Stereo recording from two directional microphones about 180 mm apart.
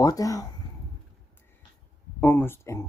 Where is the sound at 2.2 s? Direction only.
10° left (ahead or behind).